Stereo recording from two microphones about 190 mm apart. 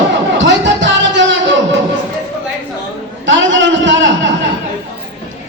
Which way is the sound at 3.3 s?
75° right (ahead or behind).